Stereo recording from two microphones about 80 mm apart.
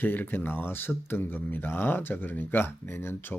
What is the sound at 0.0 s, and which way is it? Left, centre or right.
Speech, left.